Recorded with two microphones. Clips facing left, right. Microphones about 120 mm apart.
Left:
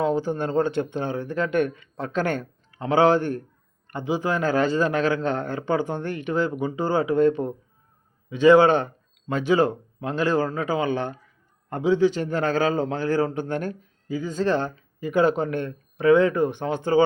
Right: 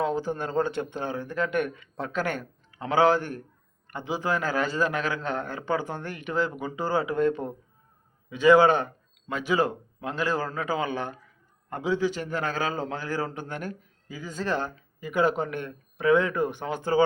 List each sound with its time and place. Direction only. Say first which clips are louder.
0.0 s speech: left 4 dB; 20° left (ahead or behind)